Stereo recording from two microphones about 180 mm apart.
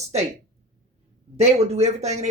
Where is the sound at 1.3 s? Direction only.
35° right (ahead or behind).